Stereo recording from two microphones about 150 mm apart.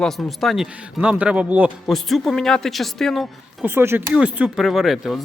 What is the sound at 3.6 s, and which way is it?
Speech, 15° right (ahead or behind).